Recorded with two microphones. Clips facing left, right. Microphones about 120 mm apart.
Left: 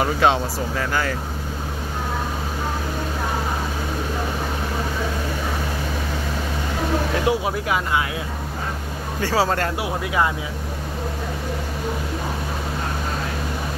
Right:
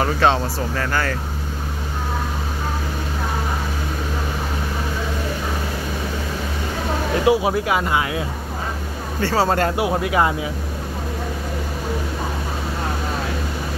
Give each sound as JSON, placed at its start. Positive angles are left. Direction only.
{"t": 0.0, "sound": "speech", "side_deg": 10}
{"t": 7.2, "sound": "speech", "side_deg": -10}
{"t": 9.2, "sound": "speech", "side_deg": 10}
{"t": 9.5, "sound": "speech", "side_deg": -25}